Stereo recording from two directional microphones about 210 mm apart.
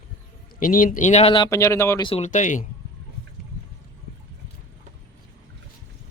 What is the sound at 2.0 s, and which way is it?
Speech, 30° left (ahead or behind).